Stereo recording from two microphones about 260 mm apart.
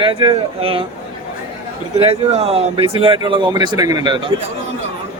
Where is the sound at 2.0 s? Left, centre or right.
Right.